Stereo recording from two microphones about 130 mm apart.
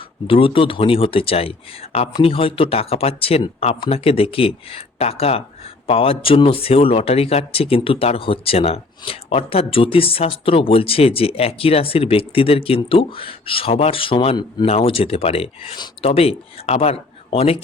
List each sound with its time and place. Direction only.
0.3 s speech: 45° left (ahead or behind)